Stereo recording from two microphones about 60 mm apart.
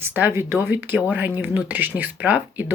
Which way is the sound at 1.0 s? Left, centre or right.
Right.